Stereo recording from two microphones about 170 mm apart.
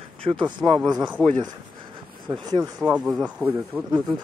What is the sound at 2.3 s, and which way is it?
Speech, 25° right (ahead or behind).